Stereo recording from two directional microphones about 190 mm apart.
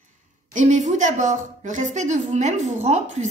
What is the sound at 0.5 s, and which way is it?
A woman's voice, 40° right (ahead or behind).